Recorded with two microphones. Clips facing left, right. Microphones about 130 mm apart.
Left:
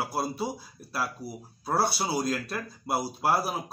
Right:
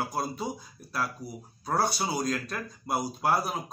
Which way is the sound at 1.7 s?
5° left (ahead or behind).